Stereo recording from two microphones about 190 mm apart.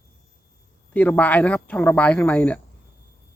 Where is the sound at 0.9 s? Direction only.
10° left (ahead or behind).